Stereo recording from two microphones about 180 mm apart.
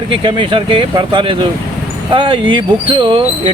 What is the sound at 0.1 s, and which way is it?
Speech, 25° right (ahead or behind).